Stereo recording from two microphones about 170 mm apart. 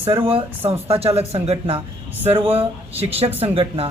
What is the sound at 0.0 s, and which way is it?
Speech, 30° right (ahead or behind).